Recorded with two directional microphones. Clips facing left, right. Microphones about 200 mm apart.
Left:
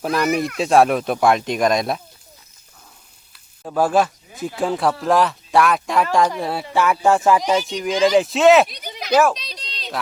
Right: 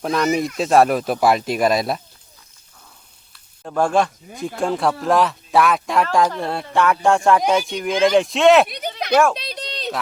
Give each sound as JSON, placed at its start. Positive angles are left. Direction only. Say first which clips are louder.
{"t": 0.0, "sound": "speech", "louder": "even", "side_deg": 0}
{"t": 3.6, "sound": "speech", "louder": "left 1 dB", "side_deg": 5}
{"t": 9.4, "sound": "a sound", "louder": "right 8 dB", "side_deg": -55}